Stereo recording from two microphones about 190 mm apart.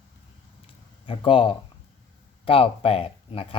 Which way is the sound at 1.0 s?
25° left (ahead or behind).